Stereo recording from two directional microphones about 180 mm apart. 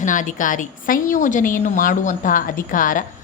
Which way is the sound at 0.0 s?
45° left (ahead or behind).